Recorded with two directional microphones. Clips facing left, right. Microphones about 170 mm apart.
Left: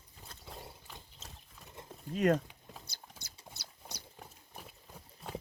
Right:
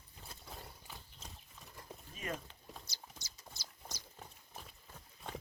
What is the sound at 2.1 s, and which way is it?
Speech, 70° left (ahead or behind).